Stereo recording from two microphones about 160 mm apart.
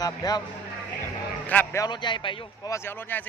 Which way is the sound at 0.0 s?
25° left (ahead or behind).